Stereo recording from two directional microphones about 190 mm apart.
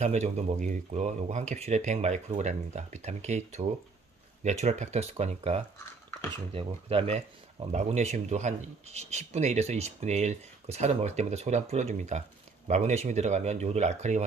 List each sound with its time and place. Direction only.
0.0 s speech: 35° right (ahead or behind)